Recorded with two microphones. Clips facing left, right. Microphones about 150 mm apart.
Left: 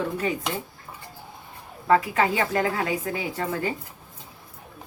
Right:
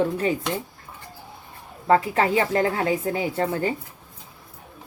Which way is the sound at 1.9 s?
30° right (ahead or behind).